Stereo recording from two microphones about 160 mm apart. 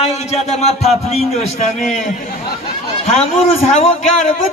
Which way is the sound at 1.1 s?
45° left (ahead or behind).